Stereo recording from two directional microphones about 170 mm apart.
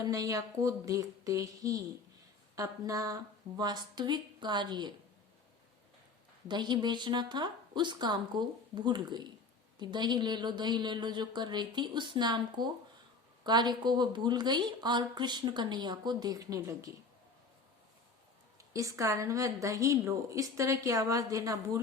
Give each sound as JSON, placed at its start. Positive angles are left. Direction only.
{"t": 0.0, "sound": "speech", "side_deg": -20}
{"t": 6.5, "sound": "speech", "side_deg": -25}
{"t": 18.7, "sound": "speech", "side_deg": -20}